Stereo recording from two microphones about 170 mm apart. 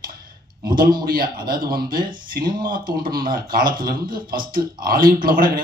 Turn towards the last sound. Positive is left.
turn(degrees=-55)  # may be behind; listen again after turning